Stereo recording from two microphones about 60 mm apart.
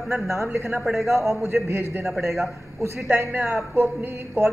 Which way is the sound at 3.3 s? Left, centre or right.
Right.